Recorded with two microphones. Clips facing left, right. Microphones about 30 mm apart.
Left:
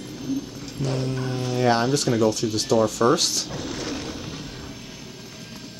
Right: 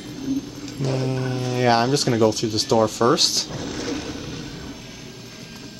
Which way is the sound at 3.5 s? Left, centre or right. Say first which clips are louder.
Right 2 dB; centre.